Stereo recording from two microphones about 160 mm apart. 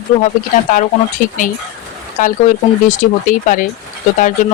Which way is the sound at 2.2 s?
55° left (ahead or behind).